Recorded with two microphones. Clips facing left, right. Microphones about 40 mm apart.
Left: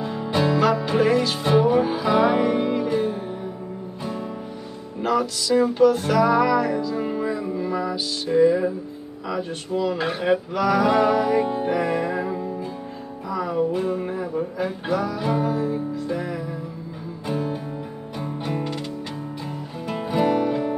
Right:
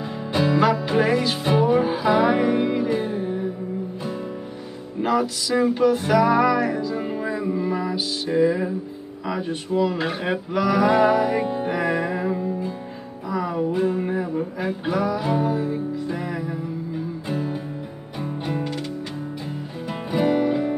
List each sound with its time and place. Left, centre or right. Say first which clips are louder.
0.0 s music: left 1 dB; centre
5.0 s music: even; centre
9.8 s music: even; centre
19.9 s music: even; centre